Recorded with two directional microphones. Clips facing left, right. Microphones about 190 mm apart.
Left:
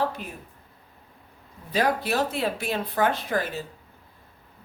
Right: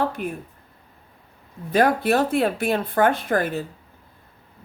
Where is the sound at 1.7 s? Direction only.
55° right (ahead or behind).